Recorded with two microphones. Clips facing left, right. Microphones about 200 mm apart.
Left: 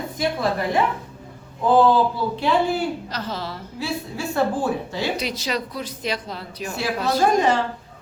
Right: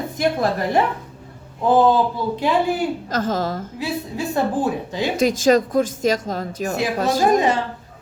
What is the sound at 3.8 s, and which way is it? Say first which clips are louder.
Speech: right 1 dB; 20° right (ahead or behind).